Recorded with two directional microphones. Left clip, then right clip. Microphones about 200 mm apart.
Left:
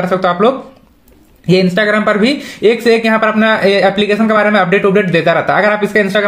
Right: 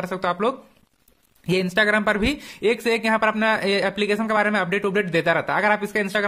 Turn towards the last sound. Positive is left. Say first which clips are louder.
# left 11 dB
turn(degrees=-35)  # may be behind; listen again after turning